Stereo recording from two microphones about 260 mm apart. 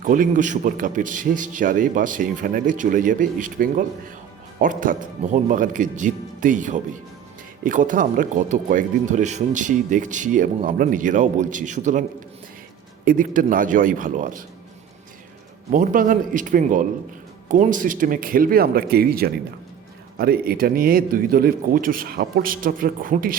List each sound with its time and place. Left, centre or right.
0.0 s speech: right
13.1 s speech: right
15.7 s speech: right